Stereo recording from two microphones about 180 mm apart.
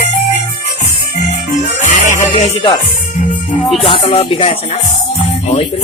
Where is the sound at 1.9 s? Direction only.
45° left (ahead or behind).